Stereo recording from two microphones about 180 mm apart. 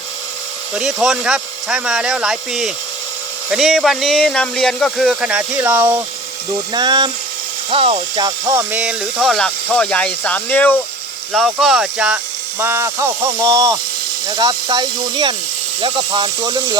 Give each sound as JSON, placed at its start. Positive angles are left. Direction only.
{"t": 0.8, "sound": "speech", "side_deg": 0}
{"t": 6.5, "sound": "speech", "side_deg": -25}
{"t": 8.7, "sound": "speech", "side_deg": -5}